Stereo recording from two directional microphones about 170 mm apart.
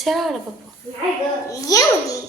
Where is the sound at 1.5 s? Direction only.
20° left (ahead or behind).